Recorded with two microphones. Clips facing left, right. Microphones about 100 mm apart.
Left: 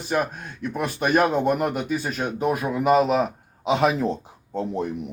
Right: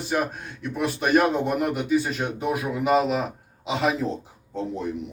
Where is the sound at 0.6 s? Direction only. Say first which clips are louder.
Even; 40° left (ahead or behind).